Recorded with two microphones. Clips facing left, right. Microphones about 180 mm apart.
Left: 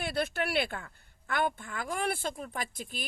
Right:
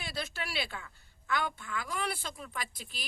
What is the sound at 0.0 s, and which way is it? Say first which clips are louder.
A woman's voice: left 8 dB; 55° left (ahead or behind).